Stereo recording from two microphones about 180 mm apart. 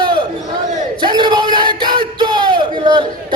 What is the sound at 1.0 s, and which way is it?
Bellow, 25° right (ahead or behind).